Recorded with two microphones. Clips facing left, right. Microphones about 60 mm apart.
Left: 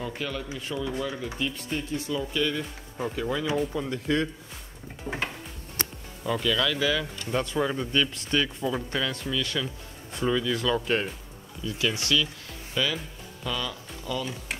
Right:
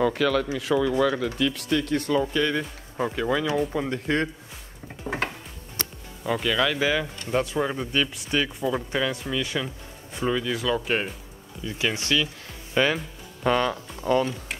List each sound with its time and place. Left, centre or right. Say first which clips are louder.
0.0 s speech: right 11 dB; right
5.1 s music: right 3 dB; right
5.8 s music: left 1 dB; left
6.4 s speech: right 2 dB; right
11.6 s speech: right 1 dB; right